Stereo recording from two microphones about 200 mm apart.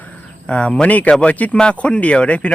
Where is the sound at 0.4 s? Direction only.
5° left (ahead or behind).